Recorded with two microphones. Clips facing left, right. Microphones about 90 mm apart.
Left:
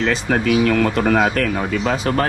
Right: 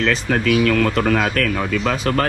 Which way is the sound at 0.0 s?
20° left (ahead or behind).